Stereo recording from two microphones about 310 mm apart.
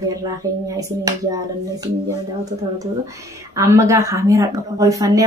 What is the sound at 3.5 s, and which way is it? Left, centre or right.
Speech, centre.